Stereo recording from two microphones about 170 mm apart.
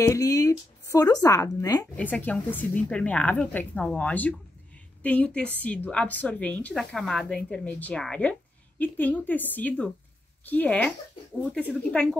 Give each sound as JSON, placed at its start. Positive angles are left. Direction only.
{"t": 0.0, "sound": "speech", "side_deg": 20}
{"t": 2.0, "sound": "a woman's voice", "side_deg": 10}